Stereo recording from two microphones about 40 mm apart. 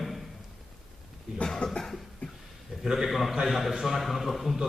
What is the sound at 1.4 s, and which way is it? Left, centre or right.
Cough, centre.